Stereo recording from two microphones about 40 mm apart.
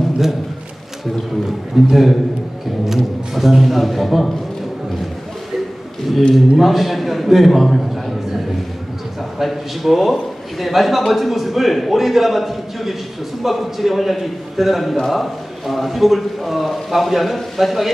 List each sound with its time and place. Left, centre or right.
1.9 s a man's voice: centre
3.3 s a man's voice: centre
6.3 s a man's voice: centre
9.4 s a man's voice: centre